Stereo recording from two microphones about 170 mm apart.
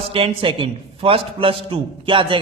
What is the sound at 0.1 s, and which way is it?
A man's voice, 30° right (ahead or behind).